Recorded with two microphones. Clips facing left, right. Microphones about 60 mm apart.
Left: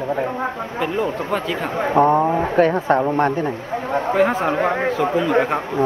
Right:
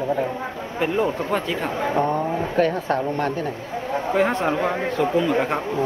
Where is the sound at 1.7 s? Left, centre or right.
Left.